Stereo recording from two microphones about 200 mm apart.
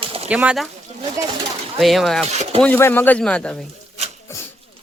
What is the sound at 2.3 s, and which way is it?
Speech, 35° right (ahead or behind).